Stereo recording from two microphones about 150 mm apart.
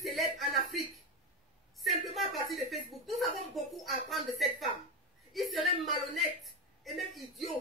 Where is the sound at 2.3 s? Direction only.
Centre (ahead or behind).